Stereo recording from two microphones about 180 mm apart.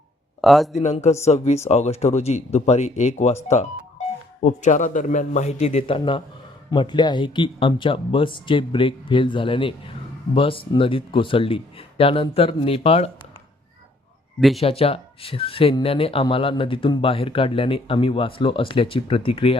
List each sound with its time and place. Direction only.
0.4 s speech: centre (ahead or behind)
0.8 s speech: 40° left (ahead or behind)
14.6 s speech: 30° left (ahead or behind)